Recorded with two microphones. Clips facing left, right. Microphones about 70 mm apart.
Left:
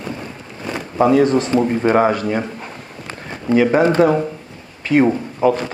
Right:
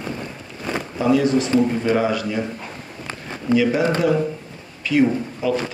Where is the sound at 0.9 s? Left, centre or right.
Left.